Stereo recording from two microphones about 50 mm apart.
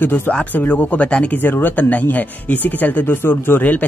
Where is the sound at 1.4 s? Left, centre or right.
Left.